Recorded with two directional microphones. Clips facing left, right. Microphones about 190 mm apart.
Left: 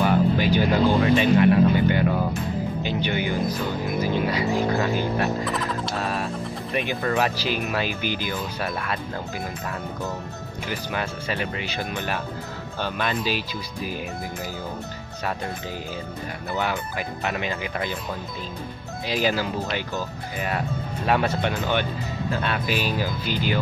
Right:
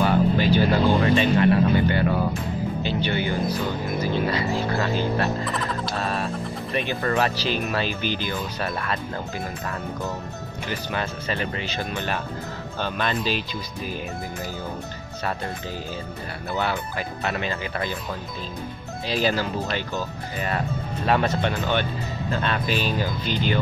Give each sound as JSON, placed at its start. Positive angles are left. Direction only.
{"t": 0.0, "sound": "music", "side_deg": 15}
{"t": 1.1, "sound": "speech", "side_deg": 15}
{"t": 2.8, "sound": "music", "side_deg": 15}
{"t": 4.0, "sound": "speech", "side_deg": 10}
{"t": 5.4, "sound": "music", "side_deg": 0}
{"t": 5.9, "sound": "a sound", "side_deg": 10}
{"t": 7.0, "sound": "speech", "side_deg": 10}
{"t": 10.7, "sound": "speech", "side_deg": 10}
{"t": 16.5, "sound": "speech", "side_deg": 15}
{"t": 19.0, "sound": "speech", "side_deg": 15}